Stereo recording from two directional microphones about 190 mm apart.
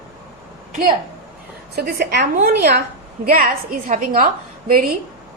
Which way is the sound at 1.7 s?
55° right (ahead or behind).